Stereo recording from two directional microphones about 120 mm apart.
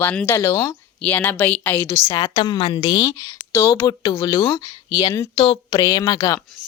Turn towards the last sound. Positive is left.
turn(degrees=35)  # may be behind; listen again after turning